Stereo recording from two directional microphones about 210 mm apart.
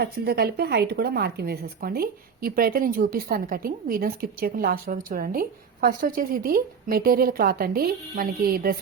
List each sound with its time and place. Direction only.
0.0 s speech: 50° right (ahead or behind)